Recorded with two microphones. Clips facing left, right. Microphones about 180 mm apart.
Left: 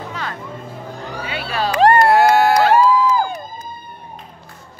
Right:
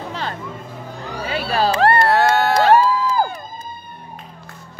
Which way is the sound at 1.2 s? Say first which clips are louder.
Right 4 dB; 35° right (ahead or behind).